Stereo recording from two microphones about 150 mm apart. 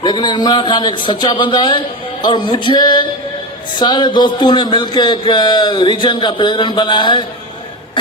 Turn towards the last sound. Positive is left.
turn(degrees=30)  # may be behind; listen again after turning